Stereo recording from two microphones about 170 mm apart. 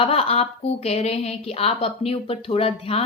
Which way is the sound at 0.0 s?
35° left (ahead or behind).